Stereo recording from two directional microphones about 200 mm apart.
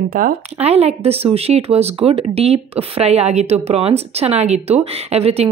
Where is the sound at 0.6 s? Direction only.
30° right (ahead or behind).